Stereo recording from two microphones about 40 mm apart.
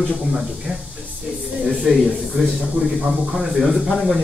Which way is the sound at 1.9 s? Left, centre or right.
Centre.